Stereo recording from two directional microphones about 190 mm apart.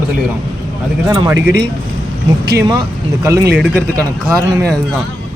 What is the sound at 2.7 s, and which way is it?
Speech, 15° right (ahead or behind).